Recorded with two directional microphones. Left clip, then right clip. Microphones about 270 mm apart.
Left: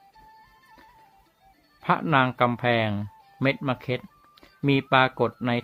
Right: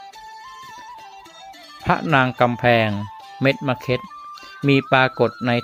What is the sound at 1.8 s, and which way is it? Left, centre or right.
Speech, centre.